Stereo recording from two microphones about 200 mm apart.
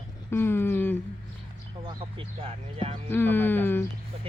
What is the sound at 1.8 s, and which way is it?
Speech, 25° right (ahead or behind).